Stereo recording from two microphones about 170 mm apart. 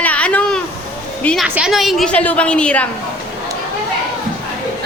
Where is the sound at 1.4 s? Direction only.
5° right (ahead or behind).